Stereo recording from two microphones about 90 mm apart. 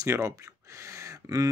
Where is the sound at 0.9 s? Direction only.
35° right (ahead or behind).